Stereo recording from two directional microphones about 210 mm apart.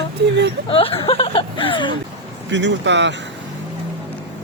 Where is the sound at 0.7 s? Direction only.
25° left (ahead or behind).